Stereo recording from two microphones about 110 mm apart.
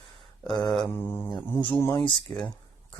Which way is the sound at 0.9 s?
20° left (ahead or behind).